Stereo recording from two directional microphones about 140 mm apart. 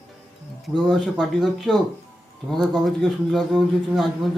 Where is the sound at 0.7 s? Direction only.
Centre (ahead or behind).